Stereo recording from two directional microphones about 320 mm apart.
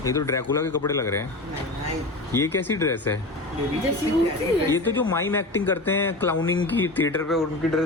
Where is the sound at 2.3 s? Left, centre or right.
Centre.